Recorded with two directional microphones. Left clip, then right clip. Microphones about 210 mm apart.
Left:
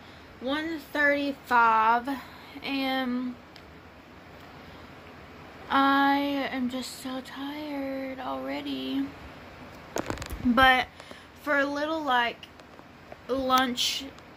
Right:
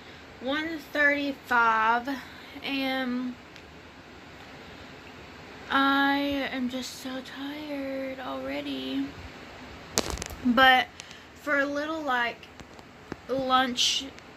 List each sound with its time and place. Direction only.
0.5 s female singing: 20° left (ahead or behind)
5.7 s female singing: 15° left (ahead or behind)
10.5 s female singing: 10° left (ahead or behind)
11.4 s a woman's voice: 20° left (ahead or behind)
13.3 s female singing: 20° left (ahead or behind)